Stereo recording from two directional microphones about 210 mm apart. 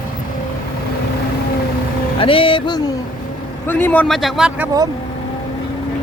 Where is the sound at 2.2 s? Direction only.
25° left (ahead or behind).